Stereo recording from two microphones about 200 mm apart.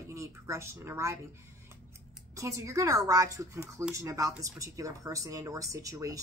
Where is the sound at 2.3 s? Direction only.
15° right (ahead or behind).